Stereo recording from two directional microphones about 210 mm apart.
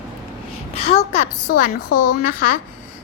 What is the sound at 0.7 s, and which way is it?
A child's voice, 30° left (ahead or behind).